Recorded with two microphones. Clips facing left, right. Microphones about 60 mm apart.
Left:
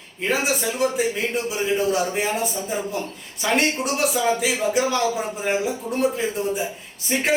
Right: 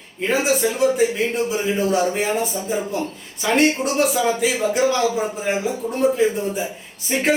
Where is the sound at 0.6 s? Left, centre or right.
Centre.